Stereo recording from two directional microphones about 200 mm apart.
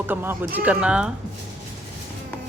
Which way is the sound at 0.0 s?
10° right (ahead or behind).